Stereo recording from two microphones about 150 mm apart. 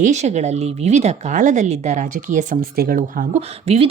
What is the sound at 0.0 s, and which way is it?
A woman's voice, 50° right (ahead or behind).